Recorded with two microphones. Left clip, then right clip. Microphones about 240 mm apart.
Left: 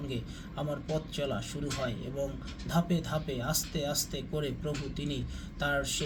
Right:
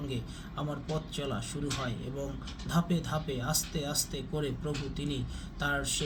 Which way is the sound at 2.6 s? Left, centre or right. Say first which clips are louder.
Left 1 dB; centre.